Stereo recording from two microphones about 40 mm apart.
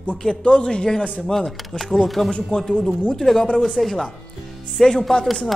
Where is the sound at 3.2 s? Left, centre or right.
Centre.